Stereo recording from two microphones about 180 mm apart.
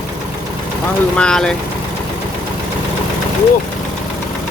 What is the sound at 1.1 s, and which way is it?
Speech, 5° left (ahead or behind).